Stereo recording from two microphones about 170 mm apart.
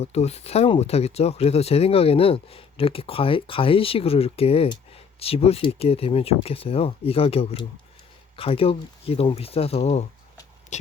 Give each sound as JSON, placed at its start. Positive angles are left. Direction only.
{"t": 0.0, "sound": "speech", "side_deg": 40}